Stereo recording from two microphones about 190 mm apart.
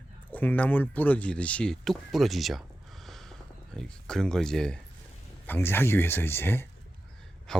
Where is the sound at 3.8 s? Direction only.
5° left (ahead or behind).